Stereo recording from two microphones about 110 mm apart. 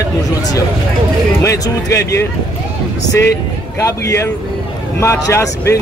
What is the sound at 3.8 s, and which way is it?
Speech, 25° left (ahead or behind).